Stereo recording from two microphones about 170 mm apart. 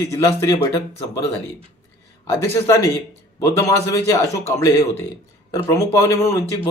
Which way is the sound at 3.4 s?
15° left (ahead or behind).